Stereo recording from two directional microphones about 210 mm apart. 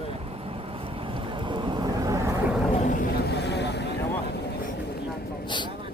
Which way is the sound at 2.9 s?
45° left (ahead or behind).